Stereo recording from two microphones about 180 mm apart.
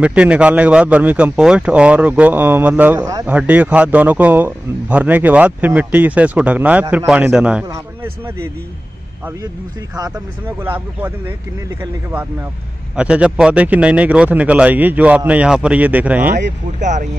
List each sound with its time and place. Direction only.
0.0 s a man's voice: 5° right (ahead or behind)
3.0 s speech: 20° right (ahead or behind)
3.3 s a man's voice: 10° right (ahead or behind)
9.9 s a man's voice: 20° right (ahead or behind)
16.3 s speech: 45° right (ahead or behind)